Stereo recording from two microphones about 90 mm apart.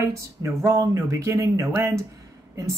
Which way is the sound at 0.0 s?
35° right (ahead or behind).